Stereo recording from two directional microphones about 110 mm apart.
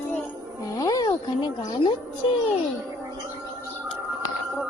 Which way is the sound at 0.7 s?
35° left (ahead or behind).